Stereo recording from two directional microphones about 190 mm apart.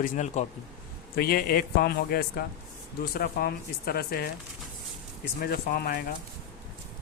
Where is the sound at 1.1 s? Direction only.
55° left (ahead or behind).